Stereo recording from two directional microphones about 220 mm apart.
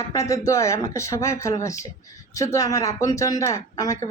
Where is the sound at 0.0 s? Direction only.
15° left (ahead or behind).